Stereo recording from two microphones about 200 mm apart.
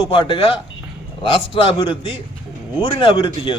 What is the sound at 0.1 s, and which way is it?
A man's voice, 25° left (ahead or behind).